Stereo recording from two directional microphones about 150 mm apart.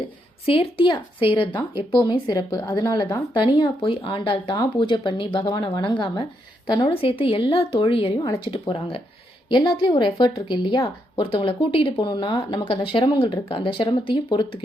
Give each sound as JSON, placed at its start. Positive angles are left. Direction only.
{"t": 0.4, "sound": "speech", "side_deg": 40}
{"t": 9.5, "sound": "speech", "side_deg": 30}